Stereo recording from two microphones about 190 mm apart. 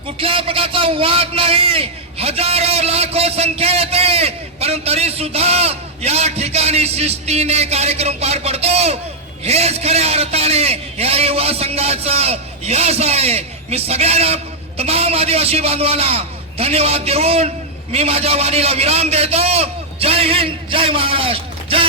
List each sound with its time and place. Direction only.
0.2 s a man's voice: 30° right (ahead or behind)